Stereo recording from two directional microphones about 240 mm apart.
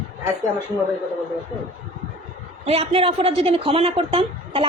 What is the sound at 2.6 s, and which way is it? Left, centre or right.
A woman's voice, right.